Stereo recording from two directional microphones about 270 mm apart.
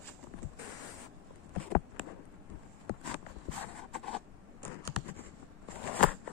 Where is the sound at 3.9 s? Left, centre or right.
Centre.